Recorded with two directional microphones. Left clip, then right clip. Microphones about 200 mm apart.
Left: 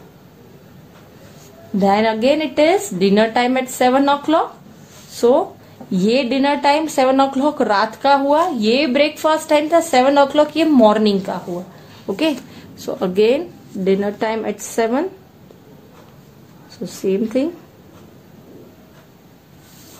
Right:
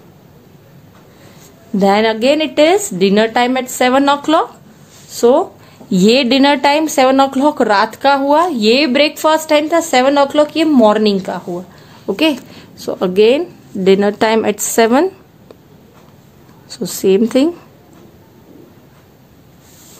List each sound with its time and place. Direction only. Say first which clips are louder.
1.8 s a woman's voice: right 3 dB; 30° right (ahead or behind)
5.1 s a sound: right 3 dB; 30° right (ahead or behind)
5.9 s a woman's voice: right 6 dB; 35° right (ahead or behind)
16.6 s a woman's voice: right 7 dB; 40° right (ahead or behind)